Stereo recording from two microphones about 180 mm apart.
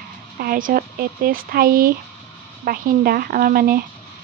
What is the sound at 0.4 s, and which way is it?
A woman's voice, 50° right (ahead or behind).